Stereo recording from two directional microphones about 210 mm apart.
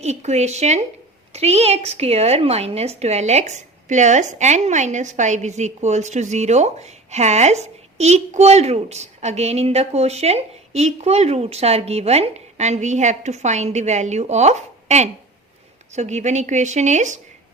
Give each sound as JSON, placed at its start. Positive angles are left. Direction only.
{"t": 0.0, "sound": "a woman's voice", "side_deg": -30}